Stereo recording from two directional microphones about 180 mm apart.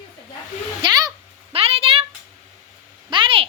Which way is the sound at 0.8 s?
20° right (ahead or behind).